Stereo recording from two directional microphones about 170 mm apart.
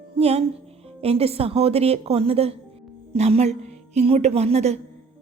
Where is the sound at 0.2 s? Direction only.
35° right (ahead or behind).